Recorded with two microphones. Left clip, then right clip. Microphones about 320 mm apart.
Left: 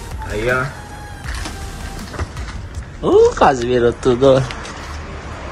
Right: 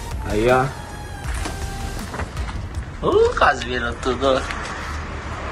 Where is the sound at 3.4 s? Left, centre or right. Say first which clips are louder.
Left 5 dB; left.